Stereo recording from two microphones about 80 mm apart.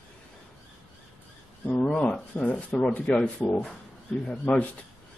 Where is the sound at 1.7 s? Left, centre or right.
Centre.